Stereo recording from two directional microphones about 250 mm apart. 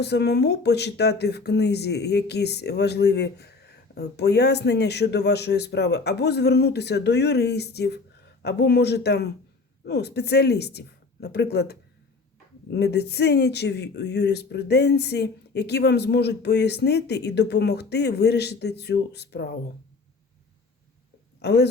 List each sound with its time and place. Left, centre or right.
0.0 s speech: left
21.4 s speech: left